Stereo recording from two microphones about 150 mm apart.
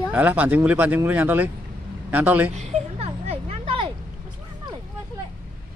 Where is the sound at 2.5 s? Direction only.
45° right (ahead or behind).